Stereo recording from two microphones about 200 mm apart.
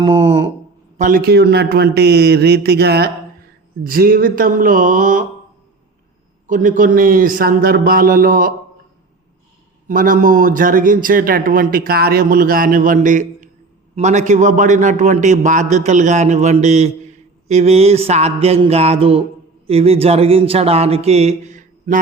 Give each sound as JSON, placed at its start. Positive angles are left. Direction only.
{"t": 0.0, "sound": "a sound", "side_deg": -25}
{"t": 0.9, "sound": "a man's voice", "side_deg": -45}
{"t": 6.5, "sound": "a man's voice", "side_deg": -40}
{"t": 9.8, "sound": "a man's voice", "side_deg": -45}